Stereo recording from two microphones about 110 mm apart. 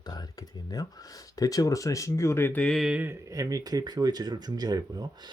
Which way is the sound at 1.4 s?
35° left (ahead or behind).